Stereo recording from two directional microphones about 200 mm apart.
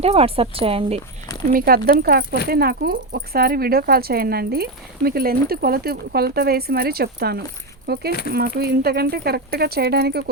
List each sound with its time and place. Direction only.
0.0 s a woman's voice: 30° right (ahead or behind)
1.5 s speech: 50° right (ahead or behind)